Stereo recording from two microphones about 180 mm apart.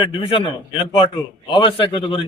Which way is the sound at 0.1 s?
25° left (ahead or behind).